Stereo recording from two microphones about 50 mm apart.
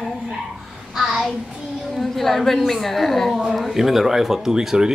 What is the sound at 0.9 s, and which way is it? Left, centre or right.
Child singing, centre.